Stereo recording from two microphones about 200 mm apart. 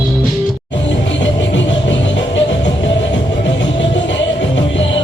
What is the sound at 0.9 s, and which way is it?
Music, 65° left (ahead or behind).